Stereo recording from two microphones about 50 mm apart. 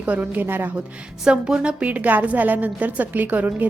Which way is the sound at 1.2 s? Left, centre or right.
Centre.